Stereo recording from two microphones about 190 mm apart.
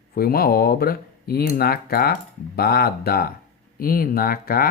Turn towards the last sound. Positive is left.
turn(degrees=50)  # may be behind; listen again after turning